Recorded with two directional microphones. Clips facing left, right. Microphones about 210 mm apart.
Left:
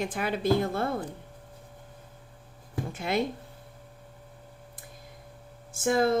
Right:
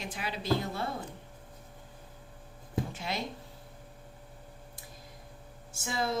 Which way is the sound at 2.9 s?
55° left (ahead or behind).